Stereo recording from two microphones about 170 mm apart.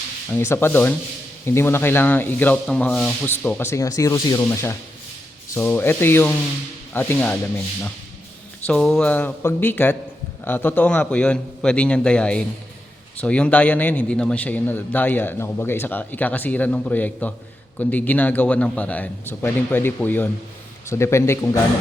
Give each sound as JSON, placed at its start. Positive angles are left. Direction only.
{"t": 0.3, "sound": "a man's voice", "side_deg": 15}
{"t": 8.6, "sound": "a man's voice", "side_deg": 5}